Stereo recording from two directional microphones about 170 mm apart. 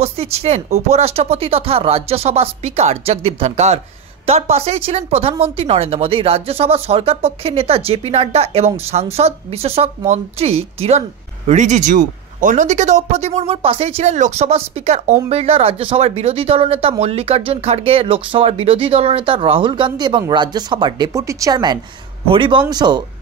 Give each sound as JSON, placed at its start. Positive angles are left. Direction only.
{"t": 0.0, "sound": "a woman's voice", "side_deg": -35}